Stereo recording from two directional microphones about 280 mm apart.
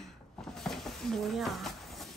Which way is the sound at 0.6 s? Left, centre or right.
Centre.